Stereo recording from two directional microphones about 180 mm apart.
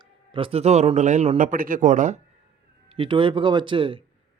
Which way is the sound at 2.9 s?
30° right (ahead or behind).